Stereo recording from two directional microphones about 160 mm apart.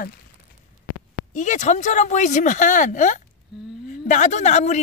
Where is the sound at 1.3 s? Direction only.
50° left (ahead or behind).